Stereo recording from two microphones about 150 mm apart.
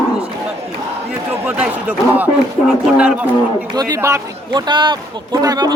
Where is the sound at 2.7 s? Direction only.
5° right (ahead or behind).